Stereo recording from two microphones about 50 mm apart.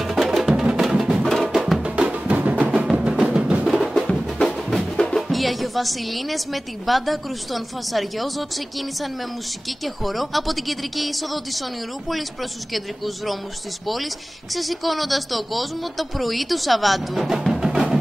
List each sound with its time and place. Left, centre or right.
0.0 s music: centre
1.8 s music: right
2.8 s music: centre
3.6 s music: centre
3.9 s music: centre
4.9 s music: centre
5.3 s a woman's voice: centre
17.4 s music: centre